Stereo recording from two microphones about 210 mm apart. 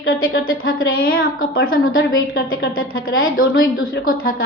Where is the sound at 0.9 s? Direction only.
45° left (ahead or behind).